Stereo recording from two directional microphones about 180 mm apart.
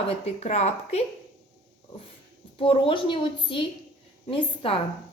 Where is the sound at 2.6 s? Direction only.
30° left (ahead or behind).